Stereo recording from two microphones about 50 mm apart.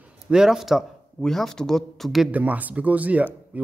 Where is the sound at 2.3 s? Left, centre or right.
Right.